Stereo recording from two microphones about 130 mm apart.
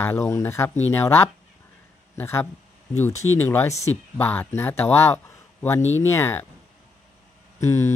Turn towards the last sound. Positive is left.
turn(degrees=20)  # may be behind; listen again after turning